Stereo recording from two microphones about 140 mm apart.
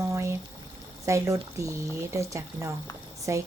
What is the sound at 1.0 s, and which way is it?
A woman's voice, 20° right (ahead or behind).